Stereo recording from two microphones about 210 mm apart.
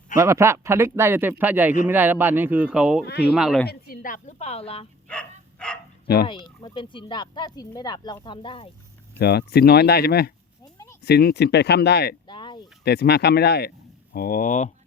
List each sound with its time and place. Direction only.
0.2 s speech: 15° right (ahead or behind)
3.1 s speech: 50° left (ahead or behind)
3.3 s speech: 5° right (ahead or behind)
3.7 s a woman's voice: 45° left (ahead or behind); by 4.9 s 30° left (ahead or behind)
5.5 s speech: 5° left (ahead or behind)
6.2 s speech: 20° left (ahead or behind)
9.1 s speech: 50° left (ahead or behind)
12.3 s a sound: 20° left (ahead or behind)
12.8 s speech: 50° left (ahead or behind)